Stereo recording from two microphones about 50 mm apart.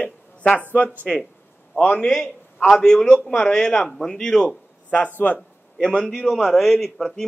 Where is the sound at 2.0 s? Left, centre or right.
Centre.